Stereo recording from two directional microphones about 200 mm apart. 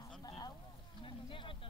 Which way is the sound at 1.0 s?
25° left (ahead or behind).